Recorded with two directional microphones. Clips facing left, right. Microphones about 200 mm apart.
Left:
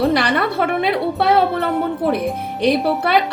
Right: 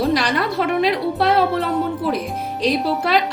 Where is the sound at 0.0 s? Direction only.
60° left (ahead or behind).